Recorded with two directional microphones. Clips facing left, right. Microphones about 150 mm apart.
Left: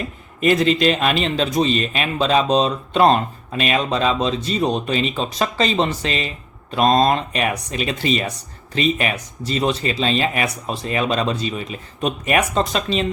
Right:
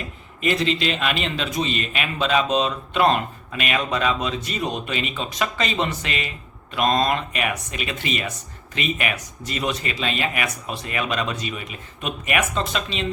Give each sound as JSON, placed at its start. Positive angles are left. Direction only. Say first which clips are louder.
{"t": 0.3, "sound": "speech", "louder": "left 6 dB", "side_deg": 45}